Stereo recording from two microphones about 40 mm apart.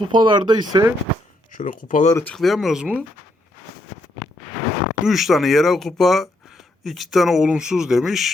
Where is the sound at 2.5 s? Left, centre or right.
Centre.